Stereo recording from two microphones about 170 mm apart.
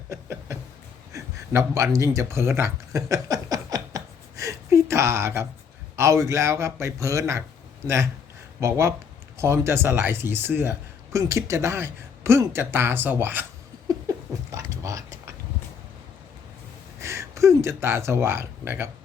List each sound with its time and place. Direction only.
0.1 s a sound: 15° right (ahead or behind)
6.0 s speech: 15° right (ahead or behind)
8.6 s speech: 15° right (ahead or behind)
13.9 s patter: 20° right (ahead or behind)
14.5 s a sound: 20° right (ahead or behind)
17.0 s speech: 15° right (ahead or behind)